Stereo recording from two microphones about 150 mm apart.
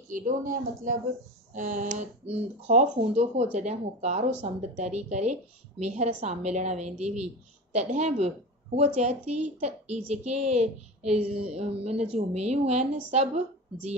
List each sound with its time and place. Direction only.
0.1 s a woman's voice: 60° right (ahead or behind)